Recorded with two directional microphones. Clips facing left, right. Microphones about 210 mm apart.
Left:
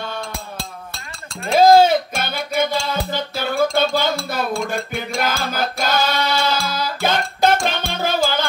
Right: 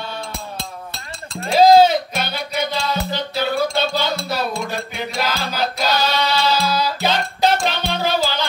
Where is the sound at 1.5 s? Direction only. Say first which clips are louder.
Even; 50° left (ahead or behind).